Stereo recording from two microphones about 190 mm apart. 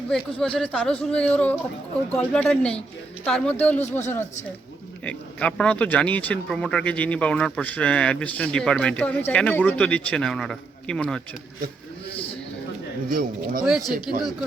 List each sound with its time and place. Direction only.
0.1 s speech: 5° left (ahead or behind)
5.0 s speech: 5° left (ahead or behind)
12.1 s a sound: 30° left (ahead or behind)
13.1 s speech: 50° right (ahead or behind)
13.7 s speech: centre (ahead or behind)